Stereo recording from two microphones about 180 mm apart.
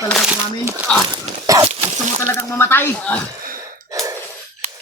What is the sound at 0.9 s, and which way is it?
Speech, 5° left (ahead or behind).